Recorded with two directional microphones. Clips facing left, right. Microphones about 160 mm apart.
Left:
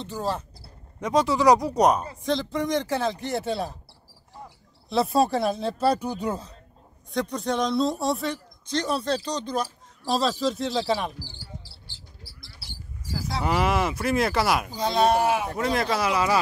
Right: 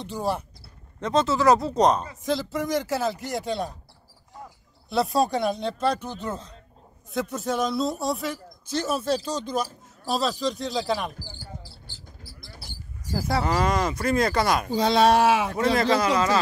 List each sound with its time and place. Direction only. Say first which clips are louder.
0.0 s speech: right 1 dB; 10° right (ahead or behind)
1.0 s speech: left 1 dB; 15° left (ahead or behind)
2.2 s speech: left 1 dB; centre (ahead or behind)
4.8 s speech: left 1 dB; centre (ahead or behind)
7.1 s speech: left 1 dB; 5° right (ahead or behind)
11.1 s basketball bounce: right 1 dB; 45° right (ahead or behind)
13.4 s speech: left 1 dB; 10° left (ahead or behind)
14.7 s speech: right 3 dB; 75° right (ahead or behind)
15.5 s speech: right 3 dB; centre (ahead or behind)